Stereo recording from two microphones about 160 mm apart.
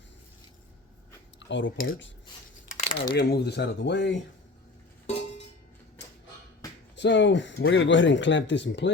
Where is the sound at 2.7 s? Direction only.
45° left (ahead or behind).